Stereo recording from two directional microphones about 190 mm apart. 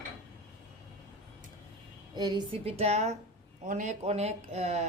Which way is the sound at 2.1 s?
20° right (ahead or behind).